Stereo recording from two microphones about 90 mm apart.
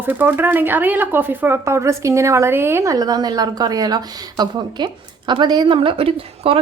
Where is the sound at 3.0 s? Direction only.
45° right (ahead or behind).